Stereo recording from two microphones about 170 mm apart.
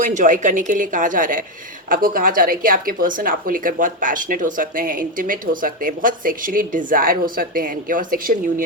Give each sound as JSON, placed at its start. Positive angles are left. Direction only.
{"t": 0.0, "sound": "a woman's voice", "side_deg": -50}